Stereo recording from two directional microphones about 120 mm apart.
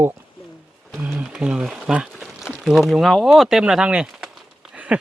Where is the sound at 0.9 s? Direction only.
5° right (ahead or behind).